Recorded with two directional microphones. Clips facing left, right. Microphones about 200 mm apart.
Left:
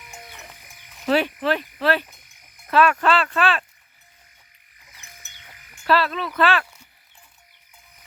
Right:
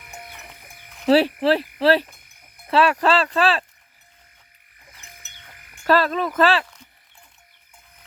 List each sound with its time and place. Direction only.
0.0 s frog: 55° right (ahead or behind)
1.0 s speech: 35° right (ahead or behind)
2.0 s insect: 55° right (ahead or behind)
2.6 s speech: 30° right (ahead or behind)
5.8 s frog: 45° right (ahead or behind)